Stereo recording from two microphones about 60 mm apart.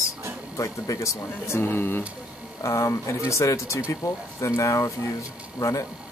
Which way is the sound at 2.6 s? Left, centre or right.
Left.